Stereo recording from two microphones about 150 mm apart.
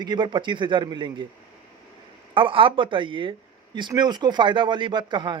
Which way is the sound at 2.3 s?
35° right (ahead or behind).